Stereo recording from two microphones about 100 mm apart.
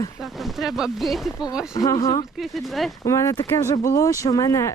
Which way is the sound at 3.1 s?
30° left (ahead or behind).